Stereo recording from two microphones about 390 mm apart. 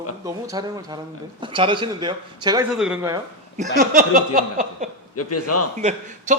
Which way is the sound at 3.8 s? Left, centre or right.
Right.